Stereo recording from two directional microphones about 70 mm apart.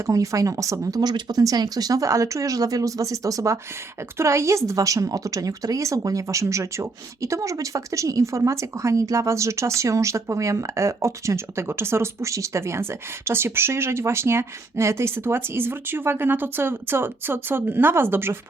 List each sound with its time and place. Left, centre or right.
0.0 s a woman's voice: right
1.0 s a woman's voice: right